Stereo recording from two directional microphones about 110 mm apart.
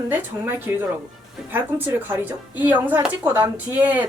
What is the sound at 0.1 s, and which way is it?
A woman's voice, 20° right (ahead or behind).